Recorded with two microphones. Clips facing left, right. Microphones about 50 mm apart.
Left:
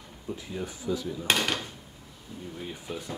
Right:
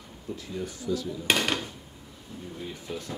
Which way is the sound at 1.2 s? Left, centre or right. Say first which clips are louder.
Right 1 dB; centre.